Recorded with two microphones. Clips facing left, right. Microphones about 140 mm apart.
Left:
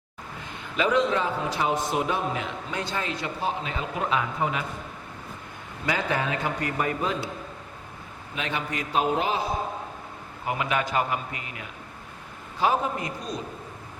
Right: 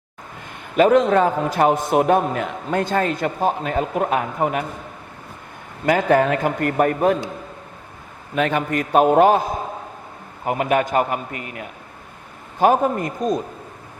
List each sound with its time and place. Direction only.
0.8 s a man's voice: 50° right (ahead or behind)
5.8 s a man's voice: 50° right (ahead or behind)
8.4 s a man's voice: 50° right (ahead or behind)